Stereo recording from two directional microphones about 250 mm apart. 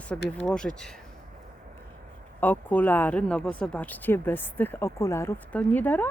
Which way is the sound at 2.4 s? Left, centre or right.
Centre.